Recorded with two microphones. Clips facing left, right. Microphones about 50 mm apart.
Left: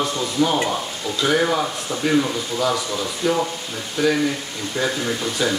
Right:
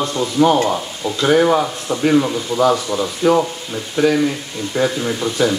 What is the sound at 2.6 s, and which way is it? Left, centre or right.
Speech, right.